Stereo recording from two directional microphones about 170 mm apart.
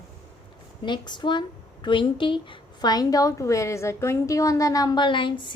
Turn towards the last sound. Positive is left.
turn(degrees=30)  # may be behind; listen again after turning